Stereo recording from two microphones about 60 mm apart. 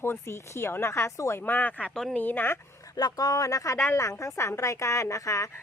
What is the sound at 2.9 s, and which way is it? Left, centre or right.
A woman's voice, left.